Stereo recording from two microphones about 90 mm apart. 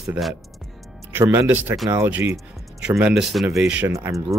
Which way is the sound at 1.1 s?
25° right (ahead or behind).